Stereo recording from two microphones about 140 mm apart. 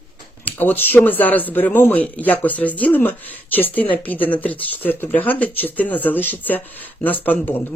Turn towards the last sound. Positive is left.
turn(degrees=15)  # may be behind; listen again after turning